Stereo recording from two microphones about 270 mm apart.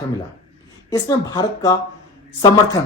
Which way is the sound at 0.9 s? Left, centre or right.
Centre.